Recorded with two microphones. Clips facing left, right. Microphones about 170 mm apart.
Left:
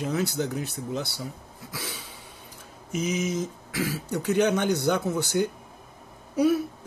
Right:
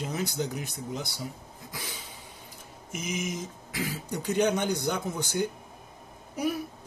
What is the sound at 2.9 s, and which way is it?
Speech, 10° right (ahead or behind).